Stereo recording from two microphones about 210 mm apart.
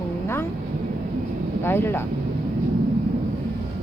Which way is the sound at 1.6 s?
10° left (ahead or behind).